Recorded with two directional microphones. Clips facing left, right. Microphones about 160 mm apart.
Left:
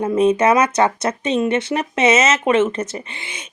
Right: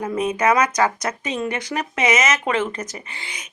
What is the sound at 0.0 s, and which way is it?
Speech, 25° left (ahead or behind).